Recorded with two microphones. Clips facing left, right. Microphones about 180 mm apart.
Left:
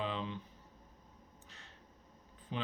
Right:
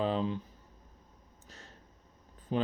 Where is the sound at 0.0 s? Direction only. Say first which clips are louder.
Right 8 dB; 40° right (ahead or behind).